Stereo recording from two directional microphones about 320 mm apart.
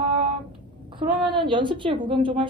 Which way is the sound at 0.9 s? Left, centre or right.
Centre.